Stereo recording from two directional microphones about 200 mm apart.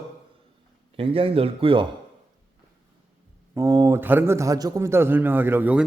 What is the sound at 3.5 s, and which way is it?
A man's voice, 15° right (ahead or behind).